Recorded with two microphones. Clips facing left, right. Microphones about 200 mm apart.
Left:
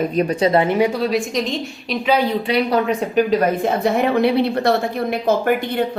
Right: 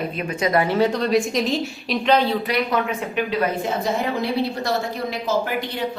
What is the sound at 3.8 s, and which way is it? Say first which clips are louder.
A woman's voice: left 7 dB; 65° left (ahead or behind).